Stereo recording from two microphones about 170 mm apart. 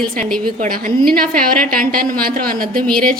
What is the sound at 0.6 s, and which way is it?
A woman's voice, 55° right (ahead or behind).